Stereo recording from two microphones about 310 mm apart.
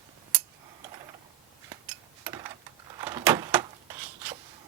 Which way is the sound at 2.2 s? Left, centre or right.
Centre.